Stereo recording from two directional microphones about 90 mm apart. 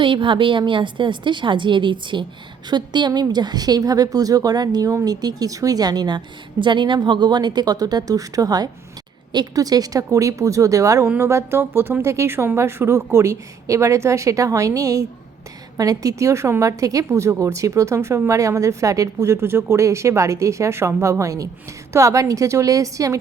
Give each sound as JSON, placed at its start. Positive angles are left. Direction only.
{"t": 0.0, "sound": "a woman's voice", "side_deg": -70}